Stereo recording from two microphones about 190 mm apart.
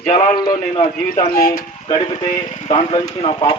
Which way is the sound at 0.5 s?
25° left (ahead or behind).